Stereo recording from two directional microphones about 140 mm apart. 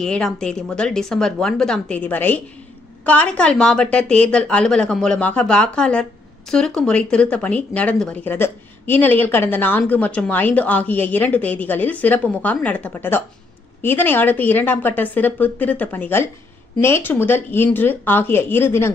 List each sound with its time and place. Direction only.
0.0 s speech: 5° left (ahead or behind)